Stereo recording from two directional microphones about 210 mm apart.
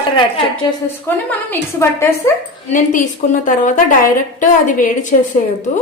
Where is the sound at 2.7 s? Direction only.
35° left (ahead or behind).